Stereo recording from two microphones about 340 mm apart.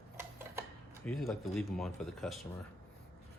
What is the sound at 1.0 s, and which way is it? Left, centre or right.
Speech, centre.